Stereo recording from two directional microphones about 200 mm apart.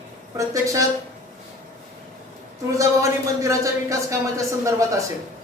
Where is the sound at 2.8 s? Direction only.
15° right (ahead or behind).